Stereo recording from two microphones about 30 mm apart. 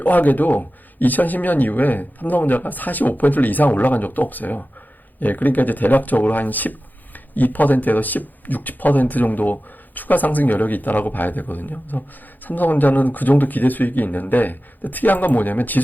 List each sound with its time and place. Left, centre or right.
0.0 s speech: left